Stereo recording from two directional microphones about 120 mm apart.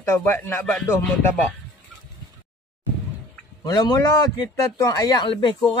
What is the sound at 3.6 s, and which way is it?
A man's voice, 35° left (ahead or behind).